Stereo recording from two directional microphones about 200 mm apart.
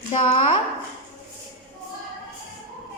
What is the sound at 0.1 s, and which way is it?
Child singing, 30° left (ahead or behind).